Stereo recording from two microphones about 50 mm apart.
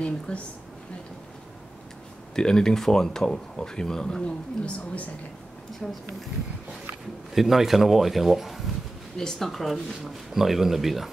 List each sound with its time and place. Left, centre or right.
0.0 s a woman's voice: left
2.3 s speech: centre
4.6 s a woman's voice: left
7.3 s speech: centre